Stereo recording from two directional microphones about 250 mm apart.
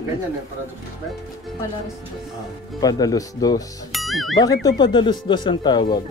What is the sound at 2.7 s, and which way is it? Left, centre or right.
Speech, centre.